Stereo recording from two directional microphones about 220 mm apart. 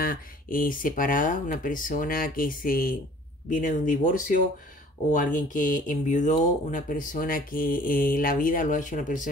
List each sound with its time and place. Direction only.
0.0 s speech: 40° left (ahead or behind)